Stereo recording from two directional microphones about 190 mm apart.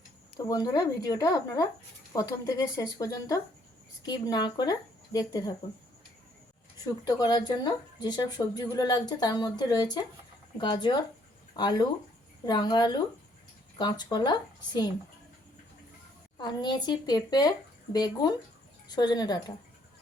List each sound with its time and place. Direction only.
0.3 s speech: 20° left (ahead or behind)
6.8 s speech: 20° left (ahead or behind)
16.4 s speech: 25° left (ahead or behind)